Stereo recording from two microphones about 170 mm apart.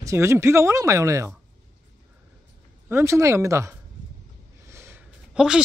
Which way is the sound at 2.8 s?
15° right (ahead or behind).